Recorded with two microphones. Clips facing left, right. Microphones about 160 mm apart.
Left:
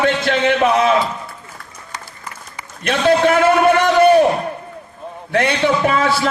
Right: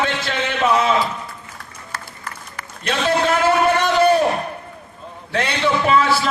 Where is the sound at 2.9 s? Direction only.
55° left (ahead or behind).